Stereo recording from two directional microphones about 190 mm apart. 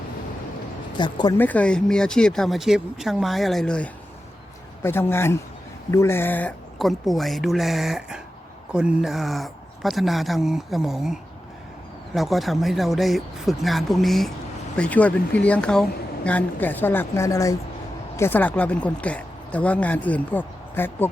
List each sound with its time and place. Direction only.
0.9 s speech: 25° left (ahead or behind)
1.4 s speech: 10° left (ahead or behind)